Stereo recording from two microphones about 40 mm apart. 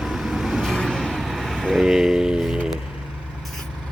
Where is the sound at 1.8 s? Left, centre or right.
Centre.